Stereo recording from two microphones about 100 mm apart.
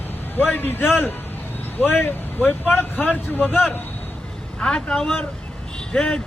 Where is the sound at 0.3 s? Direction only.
20° left (ahead or behind).